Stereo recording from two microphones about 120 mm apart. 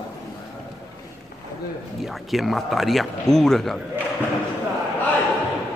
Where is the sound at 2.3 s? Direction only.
Centre (ahead or behind).